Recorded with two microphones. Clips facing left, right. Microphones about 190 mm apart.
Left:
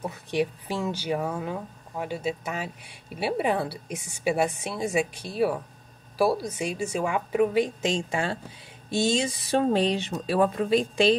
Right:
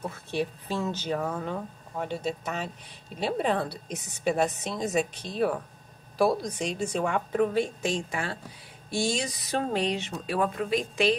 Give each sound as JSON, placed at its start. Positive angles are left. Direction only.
{"t": 0.0, "sound": "speech", "side_deg": 15}